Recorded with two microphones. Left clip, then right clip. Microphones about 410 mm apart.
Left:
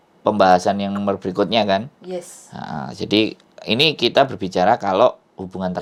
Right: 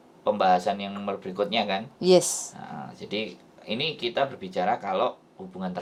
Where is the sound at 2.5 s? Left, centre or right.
Left.